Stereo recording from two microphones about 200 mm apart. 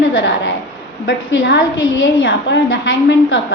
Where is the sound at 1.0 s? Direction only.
60° left (ahead or behind).